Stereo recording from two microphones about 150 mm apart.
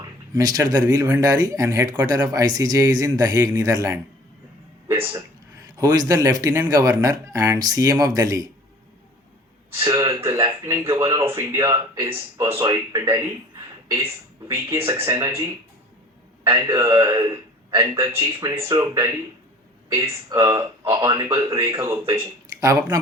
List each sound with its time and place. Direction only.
0.0 s speech: 25° right (ahead or behind)
5.9 s speech: 25° right (ahead or behind)
9.8 s speech: 25° right (ahead or behind)
14.4 s speech: 20° right (ahead or behind)
16.5 s a man's voice: 25° right (ahead or behind)